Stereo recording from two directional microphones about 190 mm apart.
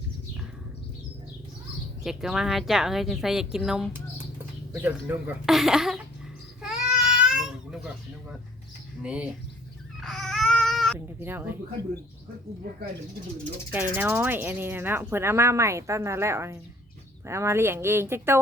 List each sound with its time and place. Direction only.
2.0 s speech: centre (ahead or behind)
6.6 s babbling: 5° right (ahead or behind)
9.0 s speech: 5° right (ahead or behind)
10.0 s baby cry: centre (ahead or behind)
10.9 s speech: 10° right (ahead or behind)
13.9 s speech: 10° right (ahead or behind)